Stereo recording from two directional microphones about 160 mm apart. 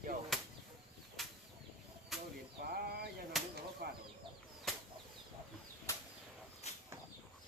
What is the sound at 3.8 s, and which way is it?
Chicken, 75° right (ahead or behind).